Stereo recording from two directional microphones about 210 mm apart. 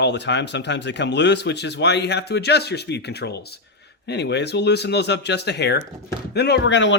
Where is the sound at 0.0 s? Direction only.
55° left (ahead or behind).